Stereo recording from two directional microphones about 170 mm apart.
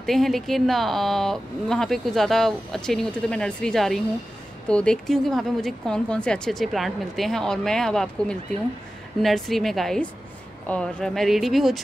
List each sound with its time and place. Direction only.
0.0 s speech: centre (ahead or behind)